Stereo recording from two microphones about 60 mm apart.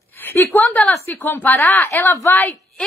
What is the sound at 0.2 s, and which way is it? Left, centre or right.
A woman's voice, left.